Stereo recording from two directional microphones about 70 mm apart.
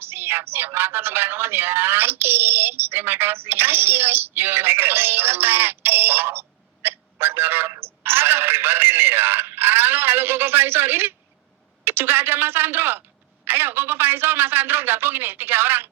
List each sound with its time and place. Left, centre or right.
0.0 s a sound: right
6.8 s telephone: right
11.9 s a man's voice: right